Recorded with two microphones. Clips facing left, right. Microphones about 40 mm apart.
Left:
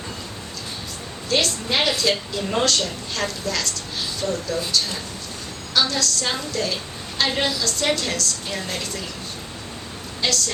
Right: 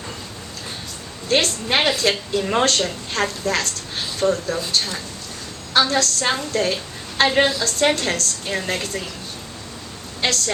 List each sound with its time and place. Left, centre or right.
1.3 s a woman's voice: right
10.2 s a woman's voice: right